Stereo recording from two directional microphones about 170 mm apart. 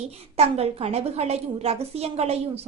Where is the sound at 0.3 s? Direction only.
40° right (ahead or behind).